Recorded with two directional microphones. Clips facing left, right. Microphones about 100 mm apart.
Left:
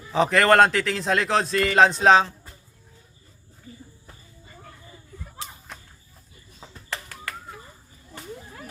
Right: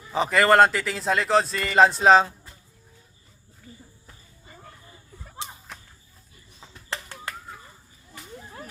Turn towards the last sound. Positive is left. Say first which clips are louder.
# even
turn(degrees=-20)  # may be behind; listen again after turning